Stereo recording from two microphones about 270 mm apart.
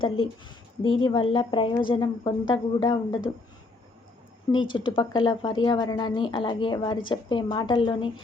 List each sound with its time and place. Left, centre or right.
0.8 s a woman's voice: centre
4.5 s a woman's voice: centre